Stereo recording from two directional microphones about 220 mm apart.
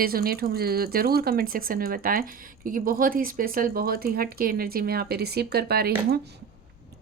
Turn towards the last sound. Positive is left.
turn(degrees=-45)  # may be behind; listen again after turning